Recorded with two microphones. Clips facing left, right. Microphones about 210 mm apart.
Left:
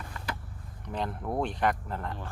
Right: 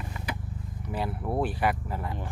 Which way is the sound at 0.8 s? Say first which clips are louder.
Right 1 dB; 5° right (ahead or behind).